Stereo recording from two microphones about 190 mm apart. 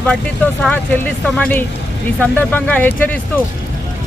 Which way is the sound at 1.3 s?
5° left (ahead or behind).